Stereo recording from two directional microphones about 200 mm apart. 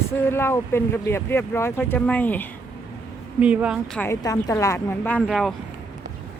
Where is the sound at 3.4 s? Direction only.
5° right (ahead or behind).